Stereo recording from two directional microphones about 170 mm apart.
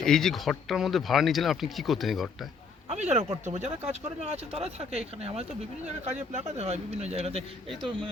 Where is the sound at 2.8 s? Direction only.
40° right (ahead or behind).